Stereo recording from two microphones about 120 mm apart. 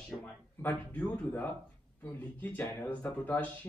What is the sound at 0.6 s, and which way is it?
Speech, 15° left (ahead or behind).